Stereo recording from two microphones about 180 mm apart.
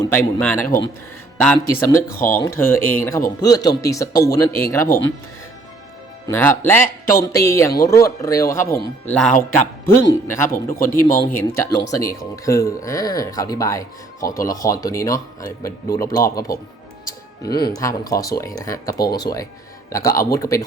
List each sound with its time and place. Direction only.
0.0 s speech: 10° left (ahead or behind)
2.1 s speech: 50° left (ahead or behind)
2.4 s speech: 15° left (ahead or behind)
6.2 s speech: 15° left (ahead or behind)
9.0 s speech: 5° left (ahead or behind)
10.2 s speech: 15° left (ahead or behind)